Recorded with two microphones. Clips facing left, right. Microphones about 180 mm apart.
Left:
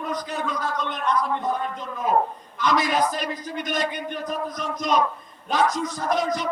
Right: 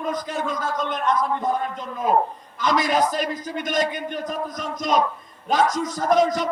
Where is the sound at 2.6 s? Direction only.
45° right (ahead or behind).